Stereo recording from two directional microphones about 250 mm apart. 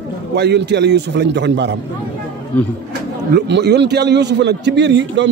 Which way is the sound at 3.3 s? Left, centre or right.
Right.